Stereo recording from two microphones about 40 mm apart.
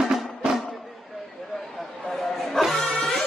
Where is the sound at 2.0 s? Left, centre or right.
Centre.